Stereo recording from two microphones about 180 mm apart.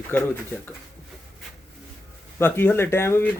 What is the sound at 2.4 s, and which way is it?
Speech, 10° left (ahead or behind).